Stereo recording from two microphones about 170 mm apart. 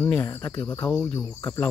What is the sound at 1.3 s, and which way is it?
Cricket, 10° left (ahead or behind).